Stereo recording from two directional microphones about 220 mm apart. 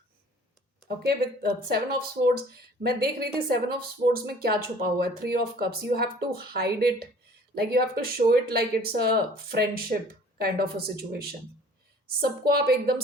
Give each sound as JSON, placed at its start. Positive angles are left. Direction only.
{"t": 0.9, "sound": "a woman's voice", "side_deg": -45}